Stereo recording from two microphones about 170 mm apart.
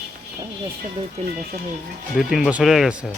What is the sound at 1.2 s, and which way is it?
Speech, 35° right (ahead or behind).